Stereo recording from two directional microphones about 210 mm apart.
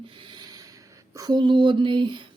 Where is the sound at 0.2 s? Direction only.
20° right (ahead or behind).